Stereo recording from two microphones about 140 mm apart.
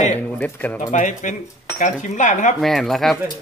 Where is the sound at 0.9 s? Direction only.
60° left (ahead or behind).